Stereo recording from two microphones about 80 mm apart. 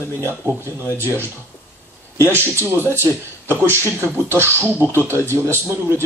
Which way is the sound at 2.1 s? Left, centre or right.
Right.